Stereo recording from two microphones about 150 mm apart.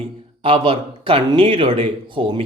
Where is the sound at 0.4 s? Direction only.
35° right (ahead or behind).